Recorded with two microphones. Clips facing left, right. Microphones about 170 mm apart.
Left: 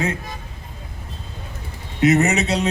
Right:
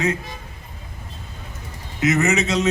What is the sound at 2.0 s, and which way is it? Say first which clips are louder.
Speech: left 3 dB; 35° left (ahead or behind).